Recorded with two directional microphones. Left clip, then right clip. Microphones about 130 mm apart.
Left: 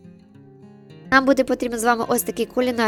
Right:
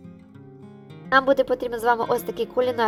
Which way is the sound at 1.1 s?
40° left (ahead or behind).